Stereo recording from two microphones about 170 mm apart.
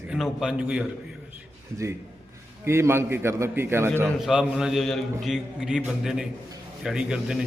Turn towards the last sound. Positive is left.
turn(degrees=-5)  # may be behind; listen again after turning